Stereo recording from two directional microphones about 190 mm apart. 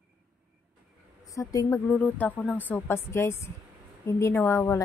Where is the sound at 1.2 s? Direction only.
15° left (ahead or behind).